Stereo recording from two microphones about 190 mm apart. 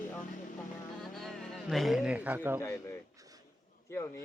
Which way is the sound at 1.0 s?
Centre (ahead or behind).